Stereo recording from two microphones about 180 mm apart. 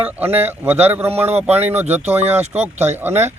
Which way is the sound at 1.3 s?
35° right (ahead or behind).